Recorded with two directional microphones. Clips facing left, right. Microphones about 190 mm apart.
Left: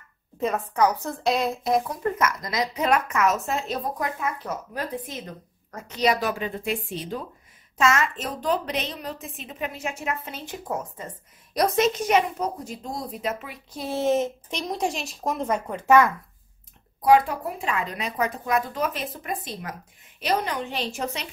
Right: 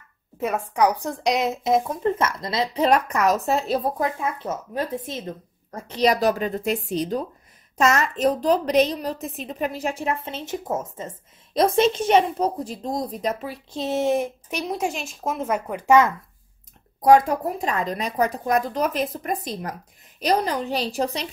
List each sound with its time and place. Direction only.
0.4 s a woman's voice: 10° right (ahead or behind); by 13.8 s 35° right (ahead or behind)
13.8 s a woman's voice: 15° right (ahead or behind)
17.0 s a woman's voice: 45° right (ahead or behind)